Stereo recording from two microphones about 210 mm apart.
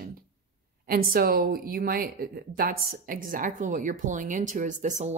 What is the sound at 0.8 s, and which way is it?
Speech, 45° right (ahead or behind).